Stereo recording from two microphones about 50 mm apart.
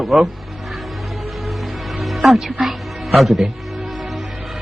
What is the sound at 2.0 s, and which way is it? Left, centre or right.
Music, centre.